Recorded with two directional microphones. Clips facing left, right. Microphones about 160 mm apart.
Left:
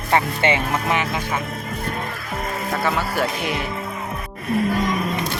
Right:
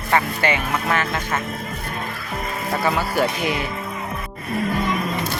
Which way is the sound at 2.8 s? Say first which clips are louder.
Right 2 dB; centre (ahead or behind).